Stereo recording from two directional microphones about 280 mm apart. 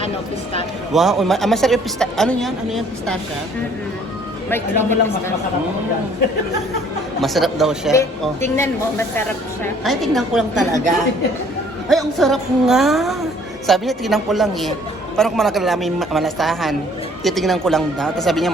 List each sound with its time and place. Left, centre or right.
0.9 s a man's voice: centre
4.4 s speech: centre
7.2 s a man's voice: centre
11.9 s a man's voice: centre